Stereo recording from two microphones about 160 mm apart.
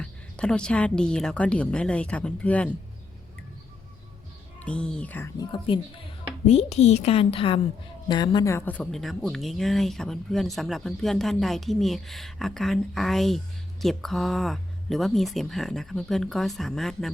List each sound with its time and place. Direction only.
0.0 s a woman's voice: 5° left (ahead or behind)
4.6 s a woman's voice: 5° left (ahead or behind)
5.4 s a woman's voice: 30° left (ahead or behind)
6.5 s a woman's voice: 40° left (ahead or behind)
8.5 s speech: 10° left (ahead or behind)